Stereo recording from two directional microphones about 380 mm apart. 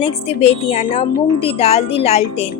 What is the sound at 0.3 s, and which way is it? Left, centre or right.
A woman's voice, centre.